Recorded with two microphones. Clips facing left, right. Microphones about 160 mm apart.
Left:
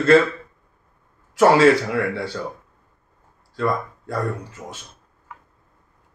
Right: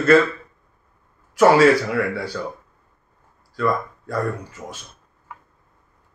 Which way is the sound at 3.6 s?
25° left (ahead or behind).